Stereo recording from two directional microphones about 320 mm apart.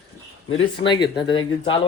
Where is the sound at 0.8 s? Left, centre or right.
Centre.